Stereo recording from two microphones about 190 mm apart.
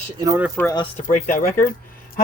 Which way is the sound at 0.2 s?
20° right (ahead or behind).